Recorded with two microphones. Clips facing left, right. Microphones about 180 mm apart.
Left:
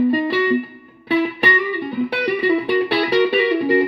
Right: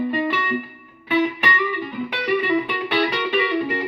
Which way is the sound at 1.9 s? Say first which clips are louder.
Left 3 dB; 35° left (ahead or behind).